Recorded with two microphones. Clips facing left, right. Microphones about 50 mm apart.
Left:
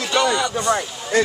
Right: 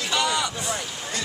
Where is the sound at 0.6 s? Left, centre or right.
Left.